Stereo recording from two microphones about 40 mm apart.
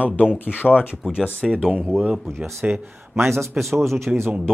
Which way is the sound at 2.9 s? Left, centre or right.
Right.